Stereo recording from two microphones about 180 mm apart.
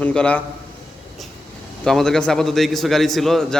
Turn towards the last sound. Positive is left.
turn(degrees=0)  # may be behind; listen again after turning